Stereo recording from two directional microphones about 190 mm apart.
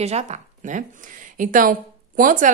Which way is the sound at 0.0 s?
35° right (ahead or behind).